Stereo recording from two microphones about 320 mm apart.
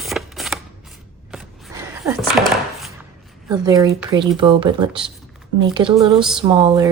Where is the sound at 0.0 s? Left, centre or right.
Centre.